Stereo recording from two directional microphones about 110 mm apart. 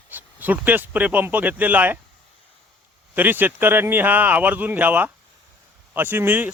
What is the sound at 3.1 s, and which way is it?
Speech, 15° right (ahead or behind).